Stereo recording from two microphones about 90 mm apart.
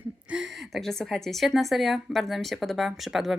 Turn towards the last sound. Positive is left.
turn(degrees=-5)  # may be behind; listen again after turning